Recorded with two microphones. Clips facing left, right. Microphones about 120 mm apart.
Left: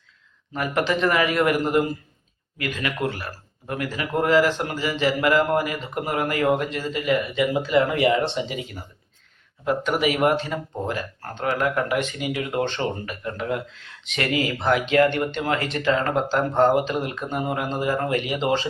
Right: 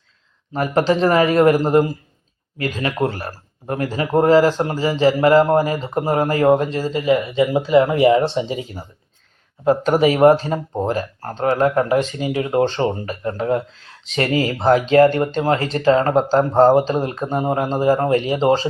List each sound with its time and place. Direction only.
0.5 s speech: 35° right (ahead or behind)